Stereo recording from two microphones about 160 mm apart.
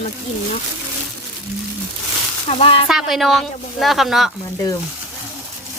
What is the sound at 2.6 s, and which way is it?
Speech, 35° left (ahead or behind).